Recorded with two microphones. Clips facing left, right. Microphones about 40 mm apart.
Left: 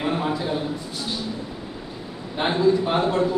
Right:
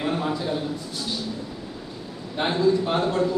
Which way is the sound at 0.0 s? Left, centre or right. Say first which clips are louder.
Left 1 dB; centre.